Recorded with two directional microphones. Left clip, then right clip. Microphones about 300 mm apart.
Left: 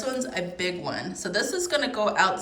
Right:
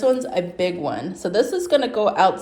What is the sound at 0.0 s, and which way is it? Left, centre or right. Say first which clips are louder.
A woman's voice: right 9 dB; centre.